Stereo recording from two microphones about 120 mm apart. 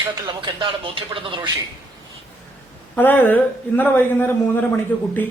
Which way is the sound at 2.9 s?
15° left (ahead or behind).